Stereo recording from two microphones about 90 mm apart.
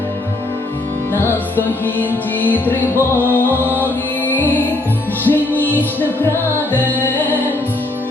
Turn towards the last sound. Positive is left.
turn(degrees=20)  # may be behind; listen again after turning